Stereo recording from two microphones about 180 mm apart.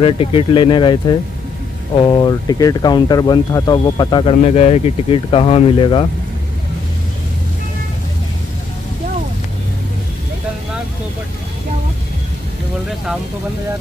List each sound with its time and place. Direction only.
0.0 s speech: 30° left (ahead or behind)